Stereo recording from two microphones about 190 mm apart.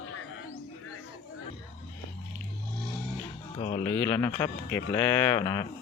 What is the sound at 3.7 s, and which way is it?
Speech, 10° left (ahead or behind).